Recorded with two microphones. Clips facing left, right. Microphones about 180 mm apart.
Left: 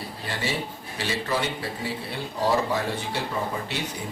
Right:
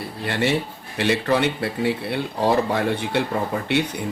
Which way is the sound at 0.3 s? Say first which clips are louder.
Right 8 dB; 65° right (ahead or behind).